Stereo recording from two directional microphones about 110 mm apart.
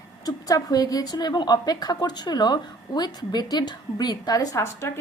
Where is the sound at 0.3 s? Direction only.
35° left (ahead or behind).